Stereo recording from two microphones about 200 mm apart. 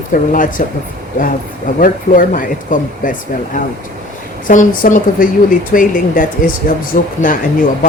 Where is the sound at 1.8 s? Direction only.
45° left (ahead or behind).